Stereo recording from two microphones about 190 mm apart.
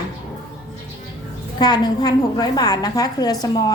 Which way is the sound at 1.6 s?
20° left (ahead or behind).